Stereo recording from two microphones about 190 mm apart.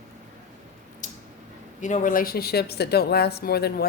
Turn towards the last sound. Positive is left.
turn(degrees=55)  # may be behind; listen again after turning